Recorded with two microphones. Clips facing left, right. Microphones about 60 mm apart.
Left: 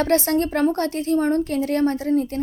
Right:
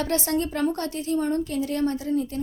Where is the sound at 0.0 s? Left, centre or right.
Left.